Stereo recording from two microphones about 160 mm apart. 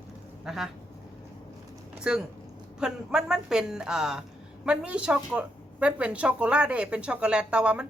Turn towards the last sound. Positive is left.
turn(degrees=-5)  # may be behind; listen again after turning